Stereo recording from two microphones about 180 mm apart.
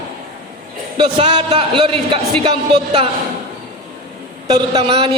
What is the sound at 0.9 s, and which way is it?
A man's voice, 30° right (ahead or behind).